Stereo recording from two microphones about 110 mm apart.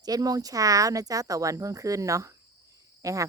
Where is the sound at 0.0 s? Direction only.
35° right (ahead or behind).